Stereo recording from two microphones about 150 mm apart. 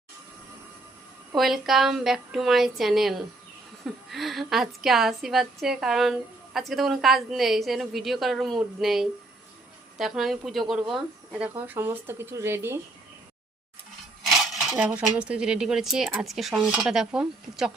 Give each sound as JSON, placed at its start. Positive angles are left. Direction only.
{"t": 1.4, "sound": "a woman's voice", "side_deg": 0}
{"t": 14.3, "sound": "dishes", "side_deg": 0}
{"t": 15.0, "sound": "a woman's voice", "side_deg": -5}